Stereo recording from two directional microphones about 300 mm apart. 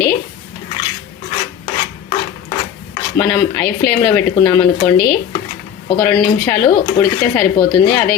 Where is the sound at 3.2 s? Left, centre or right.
Centre.